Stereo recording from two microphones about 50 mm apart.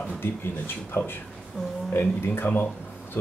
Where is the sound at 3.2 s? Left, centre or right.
Left.